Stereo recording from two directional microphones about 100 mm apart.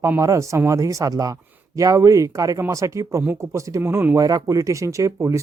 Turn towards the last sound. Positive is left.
turn(degrees=-30)  # may be behind; listen again after turning